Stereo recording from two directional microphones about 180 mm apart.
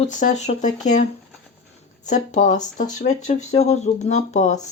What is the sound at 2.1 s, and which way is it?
Speech, 45° left (ahead or behind).